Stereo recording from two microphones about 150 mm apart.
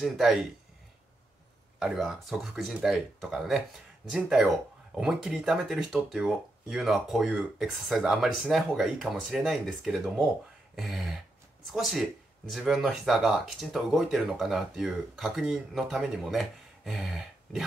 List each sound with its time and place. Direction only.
0.0 s speech: centre (ahead or behind)
1.8 s speech: centre (ahead or behind)